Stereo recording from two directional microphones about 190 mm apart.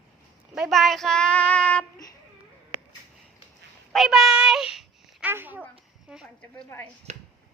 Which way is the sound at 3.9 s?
Centre (ahead or behind).